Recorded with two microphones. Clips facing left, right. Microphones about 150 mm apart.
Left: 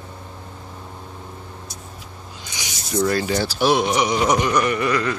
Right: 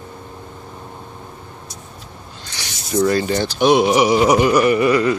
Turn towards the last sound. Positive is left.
turn(degrees=-5)  # may be behind; listen again after turning